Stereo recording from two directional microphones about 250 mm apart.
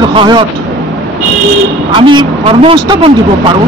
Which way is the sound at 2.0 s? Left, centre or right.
Centre.